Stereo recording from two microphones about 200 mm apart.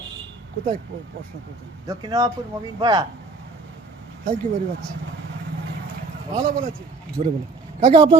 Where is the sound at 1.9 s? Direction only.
20° right (ahead or behind).